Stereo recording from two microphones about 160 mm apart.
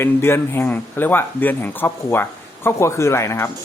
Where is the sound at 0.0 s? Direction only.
15° left (ahead or behind).